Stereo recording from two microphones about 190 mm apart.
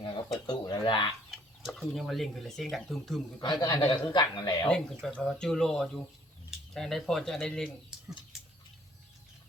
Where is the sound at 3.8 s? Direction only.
25° left (ahead or behind).